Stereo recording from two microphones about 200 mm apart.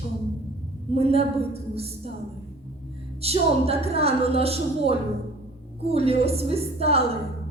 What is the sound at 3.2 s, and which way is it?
A woman's voice, 30° right (ahead or behind).